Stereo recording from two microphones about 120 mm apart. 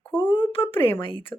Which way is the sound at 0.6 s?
20° left (ahead or behind).